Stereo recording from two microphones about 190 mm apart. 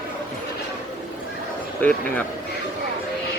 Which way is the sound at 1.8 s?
10° left (ahead or behind).